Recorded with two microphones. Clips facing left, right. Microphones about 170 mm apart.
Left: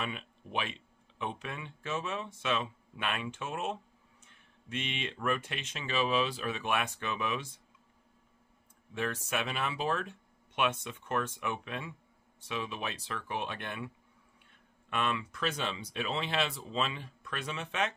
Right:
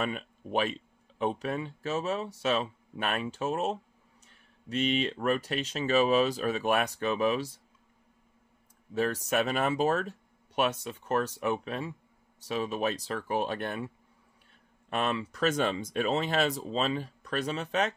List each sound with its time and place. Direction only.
0.0 s speech: 40° right (ahead or behind)
8.9 s speech: 40° right (ahead or behind)